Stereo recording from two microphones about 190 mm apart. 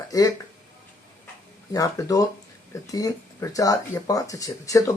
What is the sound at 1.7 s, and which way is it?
Speech, 20° left (ahead or behind).